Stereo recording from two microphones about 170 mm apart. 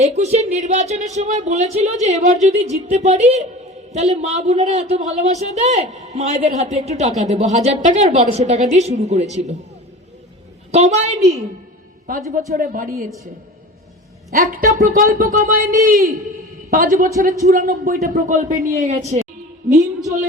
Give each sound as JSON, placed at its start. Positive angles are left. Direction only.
{"t": 0.0, "sound": "a man's voice", "side_deg": -40}
{"t": 10.7, "sound": "a man's voice", "side_deg": -40}
{"t": 12.1, "sound": "speech", "side_deg": -55}
{"t": 14.3, "sound": "speech", "side_deg": -55}
{"t": 19.7, "sound": "a woman's voice", "side_deg": -20}